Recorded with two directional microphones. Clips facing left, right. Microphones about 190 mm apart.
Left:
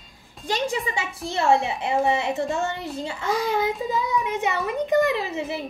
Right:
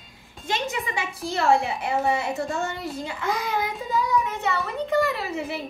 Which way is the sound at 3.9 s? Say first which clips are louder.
Right 1 dB; 15° left (ahead or behind).